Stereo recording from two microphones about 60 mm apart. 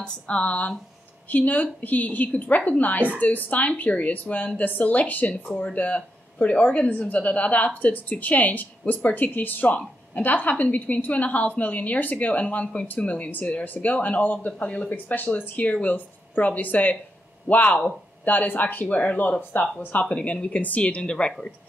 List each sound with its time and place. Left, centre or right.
0.0 s a woman's voice: centre
20.1 s speech: centre